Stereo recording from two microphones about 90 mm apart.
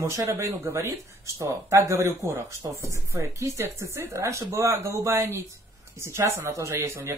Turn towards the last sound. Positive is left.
turn(degrees=-30)  # may be behind; listen again after turning